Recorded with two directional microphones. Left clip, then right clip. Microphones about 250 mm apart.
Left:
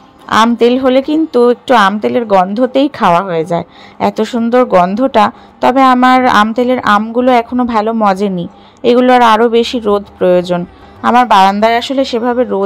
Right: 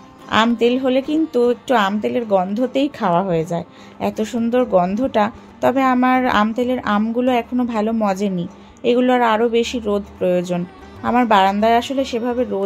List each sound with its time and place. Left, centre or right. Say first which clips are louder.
0.3 s speech: left 7 dB; centre